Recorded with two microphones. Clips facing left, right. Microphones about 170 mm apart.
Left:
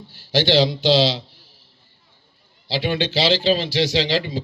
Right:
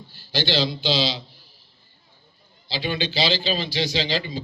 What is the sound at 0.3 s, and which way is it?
Speech, 75° left (ahead or behind).